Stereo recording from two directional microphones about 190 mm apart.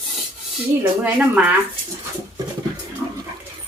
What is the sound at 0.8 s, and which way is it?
Dog, 10° right (ahead or behind).